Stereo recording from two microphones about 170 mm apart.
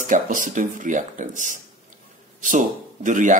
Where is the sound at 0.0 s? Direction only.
50° right (ahead or behind).